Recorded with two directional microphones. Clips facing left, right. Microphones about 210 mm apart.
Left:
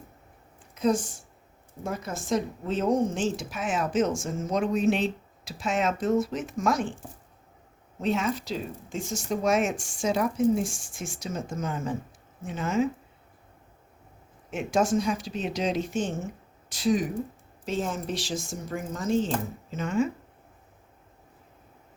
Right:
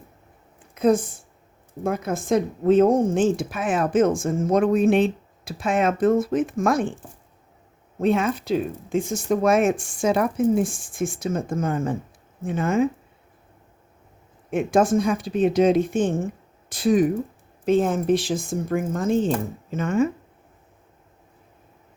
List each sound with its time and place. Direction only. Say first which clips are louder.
0.7 s a woman's voice: right 6 dB; 55° right (ahead or behind)
7.9 s a woman's voice: right 6 dB; 55° right (ahead or behind)
14.5 s a woman's voice: right 6 dB; 55° right (ahead or behind)